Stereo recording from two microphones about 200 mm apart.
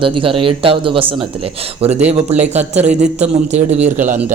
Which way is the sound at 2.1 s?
35° right (ahead or behind).